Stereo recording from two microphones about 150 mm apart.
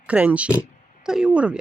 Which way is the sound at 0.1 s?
10° right (ahead or behind).